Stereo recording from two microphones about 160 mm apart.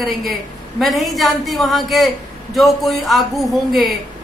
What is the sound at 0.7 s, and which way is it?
Speech, centre (ahead or behind).